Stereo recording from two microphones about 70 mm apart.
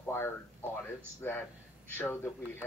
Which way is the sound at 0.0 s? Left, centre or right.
Left.